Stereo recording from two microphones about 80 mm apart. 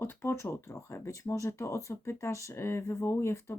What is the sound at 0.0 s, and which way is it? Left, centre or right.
Speech, left.